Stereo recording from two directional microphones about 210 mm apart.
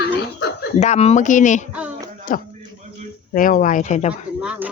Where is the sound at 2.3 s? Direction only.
40° left (ahead or behind).